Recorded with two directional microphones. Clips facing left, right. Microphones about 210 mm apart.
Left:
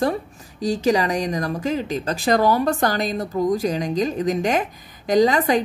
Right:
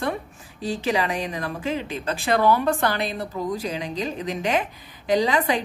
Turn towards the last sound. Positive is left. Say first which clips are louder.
# left 4 dB
turn(degrees=45)  # may be behind; listen again after turning